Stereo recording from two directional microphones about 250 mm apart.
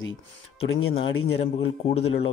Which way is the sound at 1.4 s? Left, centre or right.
Left.